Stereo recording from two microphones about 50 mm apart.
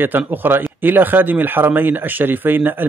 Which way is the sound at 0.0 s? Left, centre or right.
Right.